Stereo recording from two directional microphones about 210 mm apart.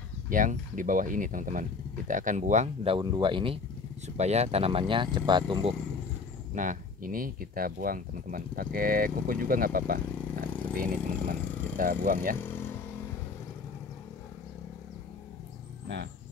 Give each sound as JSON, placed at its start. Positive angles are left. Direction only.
{"t": 0.3, "sound": "speech", "side_deg": -40}
{"t": 6.5, "sound": "speech", "side_deg": -40}
{"t": 12.4, "sound": "speech", "side_deg": 10}